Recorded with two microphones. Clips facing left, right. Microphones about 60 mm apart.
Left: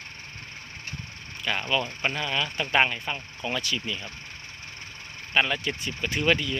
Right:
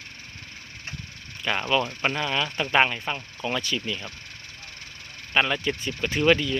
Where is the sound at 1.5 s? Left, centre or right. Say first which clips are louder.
Right 3 dB; centre.